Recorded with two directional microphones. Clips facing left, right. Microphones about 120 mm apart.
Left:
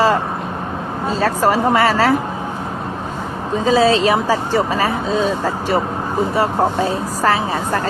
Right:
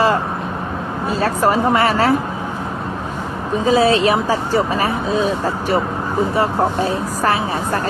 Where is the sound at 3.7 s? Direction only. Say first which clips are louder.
Even; 25° left (ahead or behind).